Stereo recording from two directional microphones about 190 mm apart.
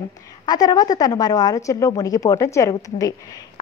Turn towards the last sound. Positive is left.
turn(degrees=20)  # may be behind; listen again after turning